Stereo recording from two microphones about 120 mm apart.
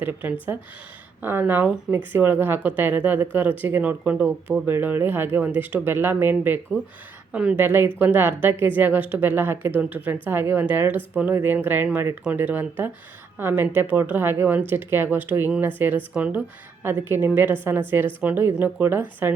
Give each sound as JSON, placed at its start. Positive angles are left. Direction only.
{"t": 0.0, "sound": "speech", "side_deg": -15}